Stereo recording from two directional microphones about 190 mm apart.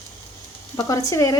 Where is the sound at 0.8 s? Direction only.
15° left (ahead or behind).